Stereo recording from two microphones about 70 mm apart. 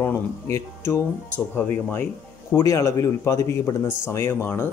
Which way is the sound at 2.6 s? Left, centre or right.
Left.